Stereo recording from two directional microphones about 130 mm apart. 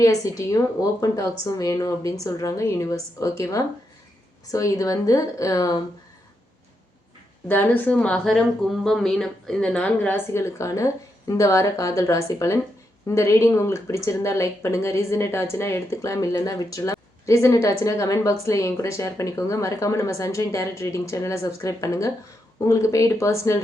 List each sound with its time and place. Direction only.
0.0 s speech: 25° left (ahead or behind)
7.4 s speech: 15° left (ahead or behind)